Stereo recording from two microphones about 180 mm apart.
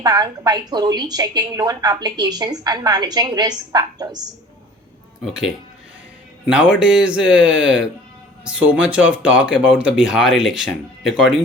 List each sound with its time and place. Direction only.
0.0 s a woman's voice: 25° right (ahead or behind)
5.2 s speech: 5° right (ahead or behind)
6.5 s speech: 5° right (ahead or behind)